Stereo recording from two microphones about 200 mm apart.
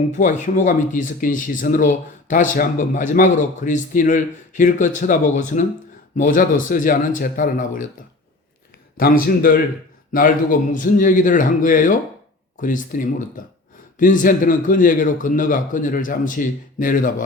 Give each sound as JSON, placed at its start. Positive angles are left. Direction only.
{"t": 0.2, "sound": "speech", "side_deg": 40}
{"t": 9.0, "sound": "speech", "side_deg": 45}